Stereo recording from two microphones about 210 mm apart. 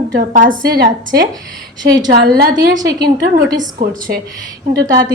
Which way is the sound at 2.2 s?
45° right (ahead or behind).